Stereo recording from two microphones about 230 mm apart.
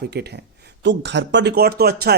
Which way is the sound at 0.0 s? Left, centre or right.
Right.